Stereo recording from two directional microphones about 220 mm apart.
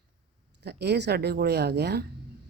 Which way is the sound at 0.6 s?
50° right (ahead or behind).